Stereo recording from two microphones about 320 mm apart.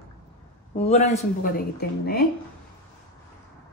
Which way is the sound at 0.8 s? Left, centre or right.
Left.